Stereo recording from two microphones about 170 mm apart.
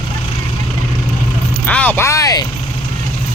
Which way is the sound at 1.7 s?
10° left (ahead or behind).